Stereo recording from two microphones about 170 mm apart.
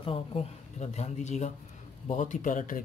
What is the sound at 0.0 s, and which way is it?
Speech, 35° left (ahead or behind).